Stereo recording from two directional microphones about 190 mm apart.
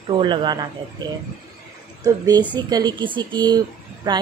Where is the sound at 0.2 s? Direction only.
25° right (ahead or behind).